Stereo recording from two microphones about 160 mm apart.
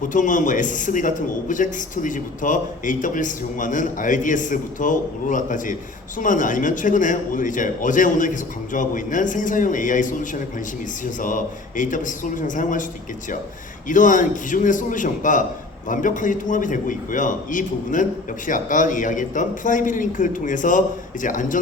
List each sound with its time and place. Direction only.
0.0 s a man's voice: 55° left (ahead or behind)
13.8 s a man's voice: 55° left (ahead or behind)